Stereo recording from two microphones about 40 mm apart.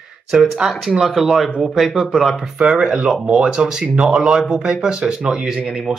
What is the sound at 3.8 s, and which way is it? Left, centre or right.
Speech, right.